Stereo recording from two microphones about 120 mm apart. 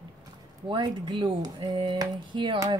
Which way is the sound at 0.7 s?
40° right (ahead or behind).